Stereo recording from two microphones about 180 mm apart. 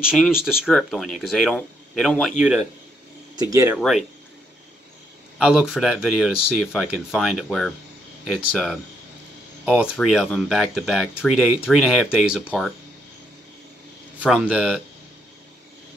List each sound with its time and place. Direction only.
0.0 s speech: 5° right (ahead or behind)
3.3 s speech: 20° right (ahead or behind)
3.7 s speech: centre (ahead or behind)
5.4 s speech: 5° right (ahead or behind)
14.2 s speech: 5° right (ahead or behind)